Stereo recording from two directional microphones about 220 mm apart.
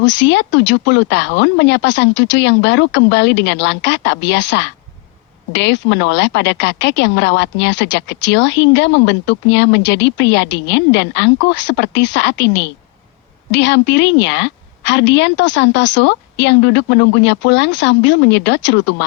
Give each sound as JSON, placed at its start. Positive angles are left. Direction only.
{"t": 0.0, "sound": "a woman's voice", "side_deg": 55}